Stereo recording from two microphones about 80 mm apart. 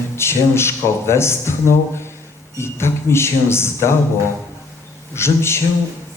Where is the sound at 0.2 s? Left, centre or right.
Left.